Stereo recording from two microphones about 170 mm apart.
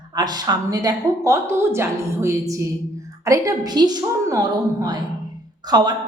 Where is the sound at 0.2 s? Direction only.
25° right (ahead or behind).